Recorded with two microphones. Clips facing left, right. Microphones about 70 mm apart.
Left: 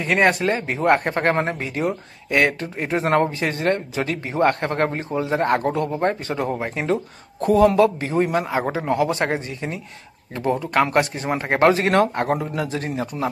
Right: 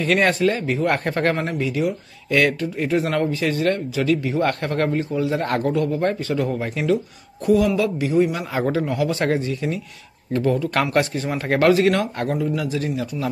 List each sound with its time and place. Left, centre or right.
0.0 s a man's voice: left
8.5 s speech: left